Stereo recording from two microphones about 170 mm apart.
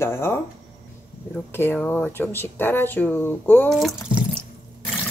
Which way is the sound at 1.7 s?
10° left (ahead or behind).